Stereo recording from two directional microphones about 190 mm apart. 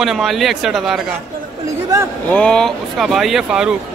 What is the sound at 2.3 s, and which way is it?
A man's voice, 5° left (ahead or behind).